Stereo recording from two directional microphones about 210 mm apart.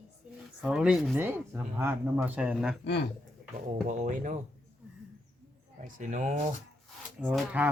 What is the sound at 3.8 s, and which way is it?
Speech, 35° right (ahead or behind).